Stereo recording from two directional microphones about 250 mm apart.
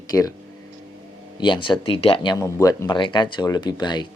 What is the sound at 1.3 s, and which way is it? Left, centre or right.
Speech, centre.